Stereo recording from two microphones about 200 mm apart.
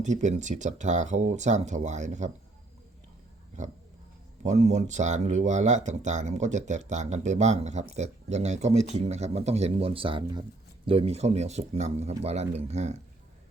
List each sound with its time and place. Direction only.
0.0 s speech: 35° right (ahead or behind)
4.4 s speech: 35° right (ahead or behind)